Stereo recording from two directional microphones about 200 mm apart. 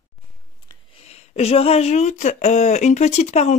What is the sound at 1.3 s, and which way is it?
Speech, 30° left (ahead or behind).